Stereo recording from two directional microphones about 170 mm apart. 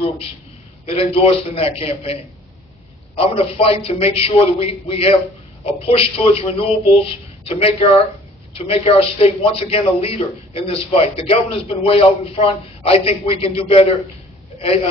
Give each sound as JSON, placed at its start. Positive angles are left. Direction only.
{"t": 0.8, "sound": "a man's voice", "side_deg": 35}
{"t": 3.2, "sound": "a man's voice", "side_deg": 35}